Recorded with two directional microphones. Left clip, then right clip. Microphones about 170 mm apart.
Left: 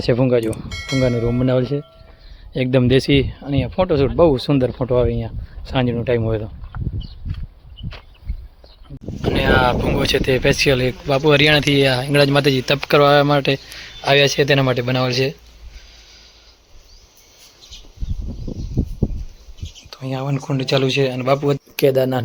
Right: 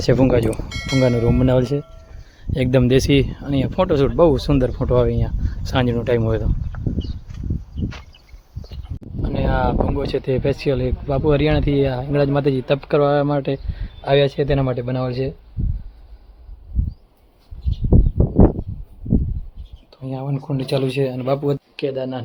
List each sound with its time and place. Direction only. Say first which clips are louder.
0.0 s speech: even; 10° right (ahead or behind)
9.2 s speech: left 6 dB; centre (ahead or behind)
19.9 s speech: left 3 dB; centre (ahead or behind)
21.8 s speech: left 8 dB; 30° left (ahead or behind)